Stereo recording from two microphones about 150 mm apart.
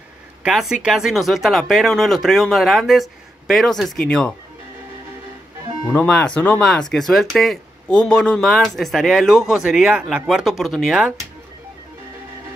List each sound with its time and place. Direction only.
0.4 s speech: 5° right (ahead or behind)
5.9 s speech: 10° left (ahead or behind)